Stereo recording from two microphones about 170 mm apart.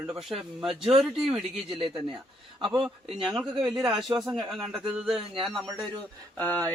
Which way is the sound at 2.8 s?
5° right (ahead or behind).